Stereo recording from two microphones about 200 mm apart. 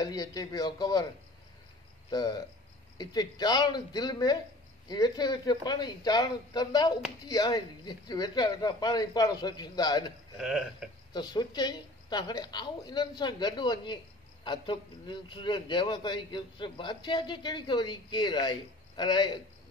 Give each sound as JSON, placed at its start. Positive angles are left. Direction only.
{"t": 0.0, "sound": "a man's voice", "side_deg": 20}
{"t": 2.0, "sound": "a man's voice", "side_deg": 20}
{"t": 10.3, "sound": "speech", "side_deg": 0}
{"t": 11.1, "sound": "a man's voice", "side_deg": 20}